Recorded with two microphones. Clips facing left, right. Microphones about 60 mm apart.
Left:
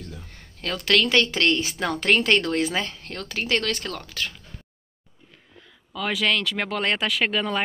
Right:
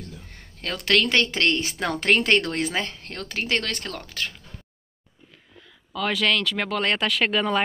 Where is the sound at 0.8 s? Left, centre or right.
Right.